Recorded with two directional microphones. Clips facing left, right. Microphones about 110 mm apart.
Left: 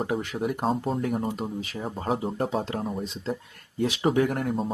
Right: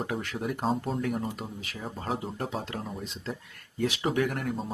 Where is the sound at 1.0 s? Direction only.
30° left (ahead or behind).